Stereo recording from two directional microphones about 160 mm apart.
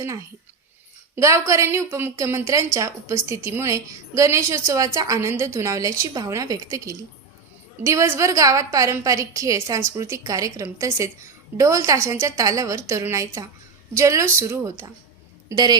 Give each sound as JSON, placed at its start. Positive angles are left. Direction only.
{"t": 0.0, "sound": "a woman's voice", "side_deg": -20}